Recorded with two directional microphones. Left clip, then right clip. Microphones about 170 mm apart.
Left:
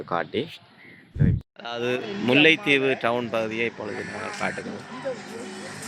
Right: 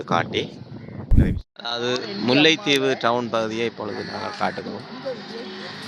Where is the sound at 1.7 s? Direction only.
5° right (ahead or behind).